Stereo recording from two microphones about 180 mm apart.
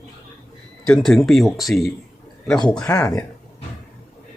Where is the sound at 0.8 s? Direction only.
5° left (ahead or behind).